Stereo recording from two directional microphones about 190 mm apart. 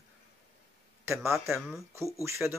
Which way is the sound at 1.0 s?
15° right (ahead or behind).